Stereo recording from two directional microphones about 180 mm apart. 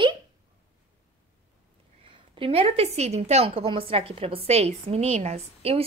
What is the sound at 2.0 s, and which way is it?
A woman's voice, 30° right (ahead or behind).